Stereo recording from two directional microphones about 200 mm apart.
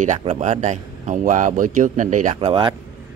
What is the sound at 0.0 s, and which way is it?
Speech, 35° right (ahead or behind).